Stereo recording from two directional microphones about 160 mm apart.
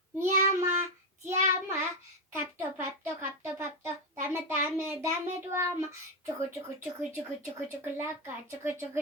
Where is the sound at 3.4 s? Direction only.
15° right (ahead or behind).